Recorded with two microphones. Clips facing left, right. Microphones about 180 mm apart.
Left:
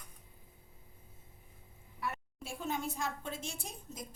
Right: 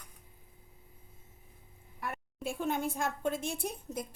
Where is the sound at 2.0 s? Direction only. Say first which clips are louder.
Right 3 dB; 55° right (ahead or behind).